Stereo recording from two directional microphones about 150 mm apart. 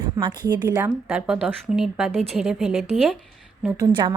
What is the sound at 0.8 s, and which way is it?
Speech, 5° right (ahead or behind).